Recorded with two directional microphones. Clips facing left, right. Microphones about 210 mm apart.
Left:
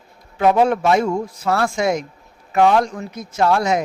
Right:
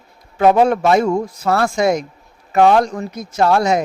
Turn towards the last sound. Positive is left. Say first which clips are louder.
# right 2 dB
turn(degrees=-35)  # may be behind; listen again after turning